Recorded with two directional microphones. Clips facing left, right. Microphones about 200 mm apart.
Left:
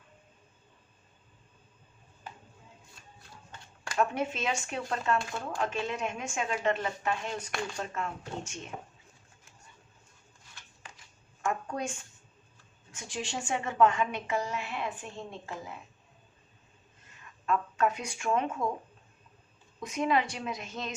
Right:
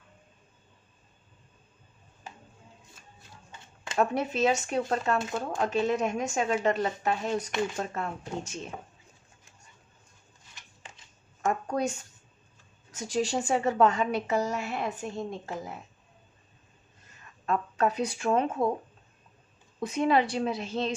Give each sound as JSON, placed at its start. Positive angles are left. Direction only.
{"t": 3.9, "sound": "a woman's voice", "side_deg": -35}
{"t": 5.1, "sound": "speech", "side_deg": -20}
{"t": 5.5, "sound": "a woman's voice", "side_deg": -40}
{"t": 10.5, "sound": "a sound", "side_deg": -25}
{"t": 11.7, "sound": "a woman's voice", "side_deg": -40}
{"t": 17.4, "sound": "a woman's voice", "side_deg": -35}
{"t": 19.8, "sound": "a woman's voice", "side_deg": -30}